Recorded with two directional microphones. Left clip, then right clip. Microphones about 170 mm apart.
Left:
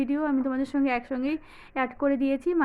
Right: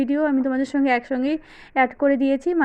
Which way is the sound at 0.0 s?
25° right (ahead or behind).